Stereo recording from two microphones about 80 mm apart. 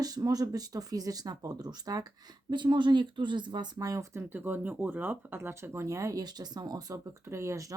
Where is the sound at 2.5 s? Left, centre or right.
Right.